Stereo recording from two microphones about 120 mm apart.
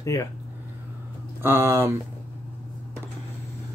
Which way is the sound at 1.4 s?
20° right (ahead or behind).